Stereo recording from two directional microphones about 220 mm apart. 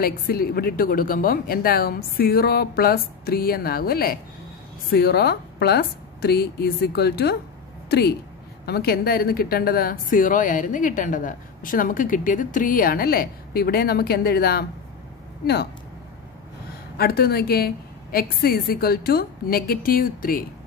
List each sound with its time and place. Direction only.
0.0 s speech: 40° left (ahead or behind)
8.6 s speech: 45° left (ahead or behind)
16.9 s speech: 45° left (ahead or behind)